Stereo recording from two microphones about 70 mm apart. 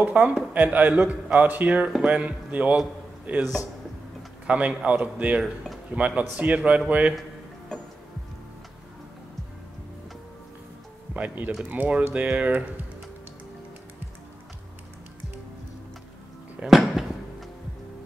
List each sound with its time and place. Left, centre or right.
0.1 s speech: centre
4.5 s speech: centre
11.1 s speech: right
16.6 s music: centre